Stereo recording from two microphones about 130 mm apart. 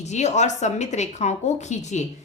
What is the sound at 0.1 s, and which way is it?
A woman's voice, 60° left (ahead or behind).